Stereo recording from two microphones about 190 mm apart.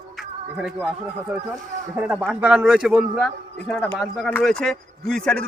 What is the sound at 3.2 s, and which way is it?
Speech, 5° left (ahead or behind).